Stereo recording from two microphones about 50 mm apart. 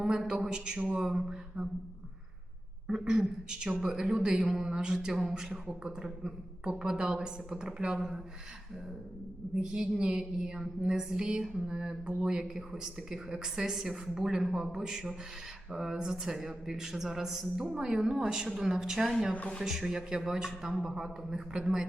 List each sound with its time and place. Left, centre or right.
0.0 s a woman's voice: centre
2.8 s a woman's voice: centre
9.6 s a woman's voice: centre